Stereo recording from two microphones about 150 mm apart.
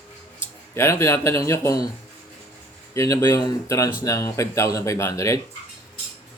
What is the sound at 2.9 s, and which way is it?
Speech, 20° left (ahead or behind).